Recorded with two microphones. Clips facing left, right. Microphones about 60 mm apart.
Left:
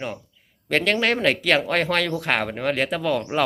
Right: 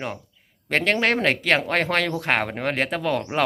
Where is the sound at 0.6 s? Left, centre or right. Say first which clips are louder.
Even; right.